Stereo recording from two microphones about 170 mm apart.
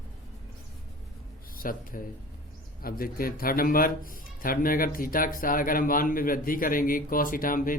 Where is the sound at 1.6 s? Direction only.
55° left (ahead or behind).